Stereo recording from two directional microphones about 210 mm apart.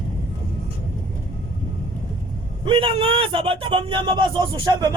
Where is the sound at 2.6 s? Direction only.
25° right (ahead or behind).